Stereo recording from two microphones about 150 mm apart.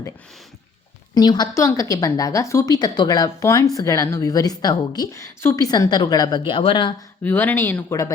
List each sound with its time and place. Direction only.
1.1 s a woman's voice: 30° left (ahead or behind)
7.3 s speech: 10° left (ahead or behind)